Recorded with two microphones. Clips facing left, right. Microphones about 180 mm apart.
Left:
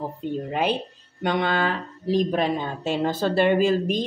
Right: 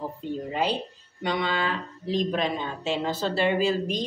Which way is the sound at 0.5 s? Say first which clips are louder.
Left 2 dB; 55° left (ahead or behind).